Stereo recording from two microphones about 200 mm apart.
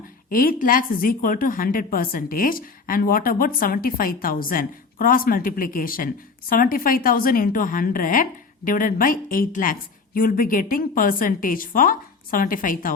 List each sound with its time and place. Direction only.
0.3 s a woman's voice: 45° left (ahead or behind)